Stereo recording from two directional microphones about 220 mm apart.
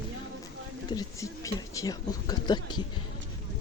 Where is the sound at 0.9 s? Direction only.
15° left (ahead or behind).